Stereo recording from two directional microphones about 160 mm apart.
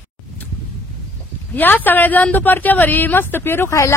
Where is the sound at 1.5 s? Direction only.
10° left (ahead or behind).